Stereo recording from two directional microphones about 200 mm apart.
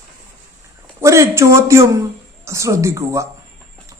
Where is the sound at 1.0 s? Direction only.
15° right (ahead or behind).